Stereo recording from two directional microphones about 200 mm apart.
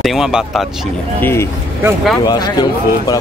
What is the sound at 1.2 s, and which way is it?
Speech, 10° left (ahead or behind).